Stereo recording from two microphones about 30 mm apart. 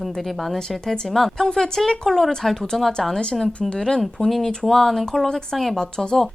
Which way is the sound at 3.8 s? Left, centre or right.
Left.